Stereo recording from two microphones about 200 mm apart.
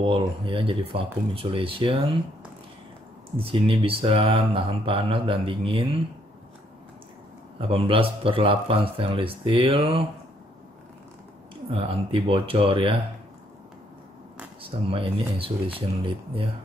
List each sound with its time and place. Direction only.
0.0 s speech: 25° right (ahead or behind)
3.3 s speech: 25° right (ahead or behind)
7.6 s speech: 25° right (ahead or behind)
11.7 s speech: 25° right (ahead or behind)
14.6 s speech: 25° right (ahead or behind)